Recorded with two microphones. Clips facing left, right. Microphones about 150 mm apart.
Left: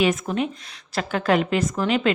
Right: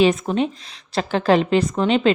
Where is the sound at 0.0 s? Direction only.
30° right (ahead or behind).